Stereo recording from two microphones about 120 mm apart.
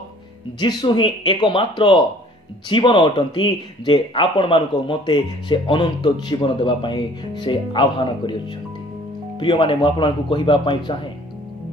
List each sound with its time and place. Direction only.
0.6 s speech: 40° left (ahead or behind)
9.4 s speech: 45° left (ahead or behind)